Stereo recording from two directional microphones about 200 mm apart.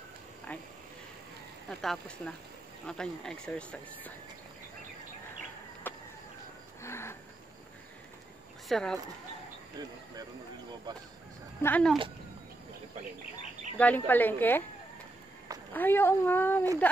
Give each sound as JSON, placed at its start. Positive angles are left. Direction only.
{"t": 0.5, "sound": "a sound", "side_deg": 10}
{"t": 1.7, "sound": "speech", "side_deg": 0}
{"t": 5.9, "sound": "a sound", "side_deg": 10}
{"t": 8.6, "sound": "speech", "side_deg": 0}
{"t": 9.8, "sound": "speech", "side_deg": -20}
{"t": 11.6, "sound": "speech", "side_deg": 5}
{"t": 13.7, "sound": "speech", "side_deg": 10}
{"t": 15.7, "sound": "speech", "side_deg": 10}